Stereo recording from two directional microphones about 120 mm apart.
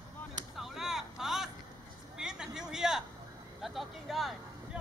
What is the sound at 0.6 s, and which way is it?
Vehicle, 5° right (ahead or behind).